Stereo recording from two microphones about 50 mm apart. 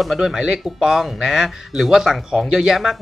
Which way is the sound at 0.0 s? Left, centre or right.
Centre.